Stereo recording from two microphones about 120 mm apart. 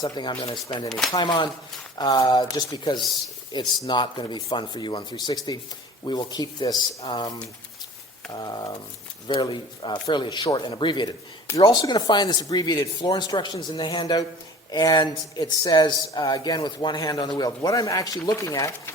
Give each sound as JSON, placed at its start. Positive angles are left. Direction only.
{"t": 0.0, "sound": "speech", "side_deg": 35}
{"t": 0.9, "sound": "speech", "side_deg": 0}
{"t": 1.1, "sound": "speech", "side_deg": 40}
{"t": 8.3, "sound": "speech", "side_deg": 35}